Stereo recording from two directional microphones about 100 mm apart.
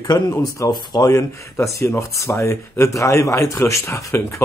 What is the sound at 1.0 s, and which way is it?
Speech, 30° left (ahead or behind).